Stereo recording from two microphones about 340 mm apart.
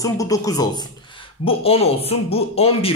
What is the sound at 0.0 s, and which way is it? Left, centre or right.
Speech, centre.